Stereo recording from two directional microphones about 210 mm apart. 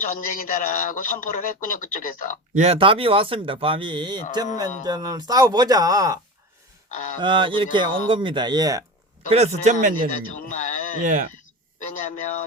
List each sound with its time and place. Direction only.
0.0 s speech: 40° left (ahead or behind)
2.6 s speech: 25° right (ahead or behind)
7.2 s speech: 25° right (ahead or behind)
9.3 s speech: 30° right (ahead or behind)
10.5 s a sound: 35° left (ahead or behind)
11.0 s speech: 35° right (ahead or behind)